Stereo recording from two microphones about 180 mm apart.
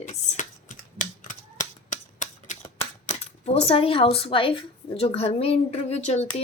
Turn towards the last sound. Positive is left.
turn(degrees=40)  # may be behind; listen again after turning